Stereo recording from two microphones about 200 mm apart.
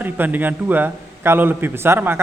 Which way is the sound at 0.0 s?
10° right (ahead or behind).